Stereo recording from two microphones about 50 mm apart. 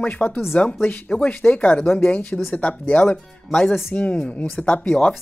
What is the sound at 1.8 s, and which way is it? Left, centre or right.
Speech, left.